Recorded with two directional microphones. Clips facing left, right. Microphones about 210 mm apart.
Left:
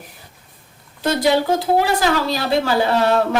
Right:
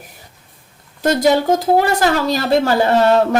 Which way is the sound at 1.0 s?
45° right (ahead or behind).